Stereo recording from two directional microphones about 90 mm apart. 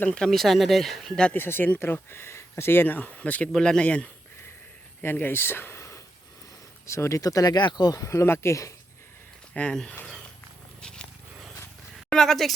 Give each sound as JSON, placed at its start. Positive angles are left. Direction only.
{"t": 0.0, "sound": "speech", "side_deg": 10}
{"t": 1.3, "sound": "speech", "side_deg": 25}
{"t": 5.0, "sound": "speech", "side_deg": 25}
{"t": 7.9, "sound": "speech", "side_deg": 35}
{"t": 9.6, "sound": "speech", "side_deg": 10}
{"t": 10.8, "sound": "walk", "side_deg": 10}
{"t": 12.1, "sound": "speech", "side_deg": 5}